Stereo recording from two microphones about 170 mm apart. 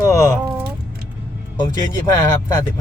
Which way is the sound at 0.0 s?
20° left (ahead or behind).